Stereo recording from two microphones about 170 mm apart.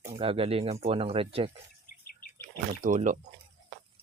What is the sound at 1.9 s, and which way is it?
Bird, 55° left (ahead or behind).